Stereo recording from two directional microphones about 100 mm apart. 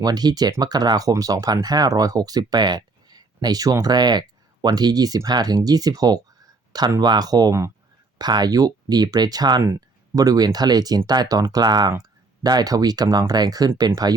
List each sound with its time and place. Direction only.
0.0 s speech: 40° right (ahead or behind)